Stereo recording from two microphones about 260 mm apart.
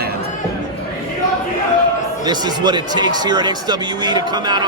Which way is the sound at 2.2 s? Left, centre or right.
Centre.